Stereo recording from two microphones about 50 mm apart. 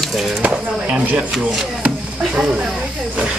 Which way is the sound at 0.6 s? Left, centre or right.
Right.